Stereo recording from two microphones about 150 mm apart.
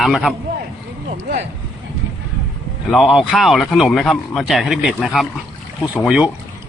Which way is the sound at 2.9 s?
Centre (ahead or behind).